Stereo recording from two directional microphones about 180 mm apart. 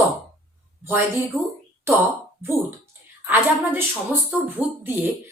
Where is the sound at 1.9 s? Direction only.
15° right (ahead or behind).